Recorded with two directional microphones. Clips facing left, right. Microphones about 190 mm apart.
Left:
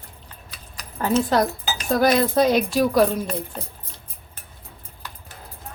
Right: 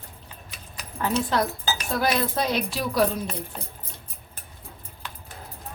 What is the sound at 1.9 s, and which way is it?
Speech, 45° left (ahead or behind).